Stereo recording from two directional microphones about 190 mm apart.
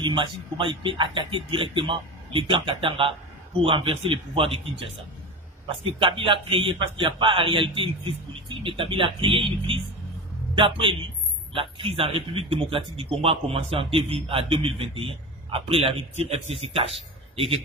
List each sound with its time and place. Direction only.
0.0 s a man's voice: 25° right (ahead or behind)
5.9 s a man's voice: 25° right (ahead or behind)